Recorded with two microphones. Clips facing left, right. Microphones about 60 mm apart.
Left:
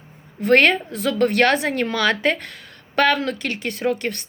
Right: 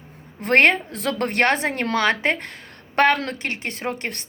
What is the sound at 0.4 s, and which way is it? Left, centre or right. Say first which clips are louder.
Speech: left 1 dB; right.